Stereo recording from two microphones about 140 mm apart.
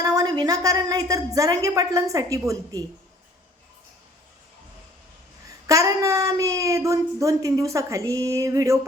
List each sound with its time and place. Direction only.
0.0 s speech: 25° right (ahead or behind)
5.6 s speech: 25° right (ahead or behind)